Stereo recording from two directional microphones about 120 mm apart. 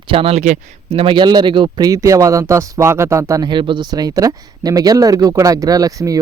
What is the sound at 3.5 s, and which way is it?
Speech, 40° right (ahead or behind).